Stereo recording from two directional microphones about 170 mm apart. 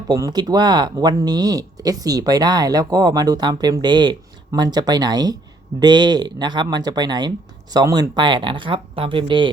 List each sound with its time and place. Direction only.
0.1 s speech: 25° right (ahead or behind)